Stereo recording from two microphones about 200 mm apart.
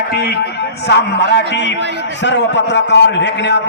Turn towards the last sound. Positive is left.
turn(degrees=60)  # may be behind; listen again after turning